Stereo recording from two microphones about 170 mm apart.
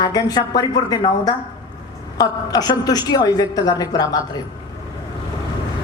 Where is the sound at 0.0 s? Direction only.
20° left (ahead or behind).